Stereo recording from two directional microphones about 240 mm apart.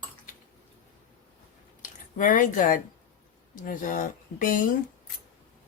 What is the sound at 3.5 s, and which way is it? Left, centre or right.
Speech, left.